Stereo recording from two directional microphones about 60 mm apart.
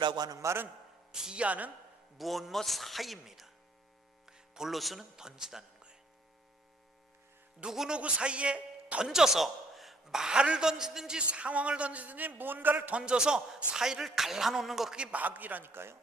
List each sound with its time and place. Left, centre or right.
0.2 s a man's voice: right
1.1 s a man's voice: centre
2.1 s speech: centre
4.3 s music: centre
5.1 s speech: centre
7.6 s a man's voice: centre
9.0 s a man's voice: centre; by 13.0 s right
13.0 s a man's voice: centre
14.9 s a man's voice: right